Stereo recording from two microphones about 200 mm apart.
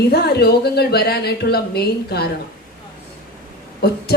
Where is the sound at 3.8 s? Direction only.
50° left (ahead or behind).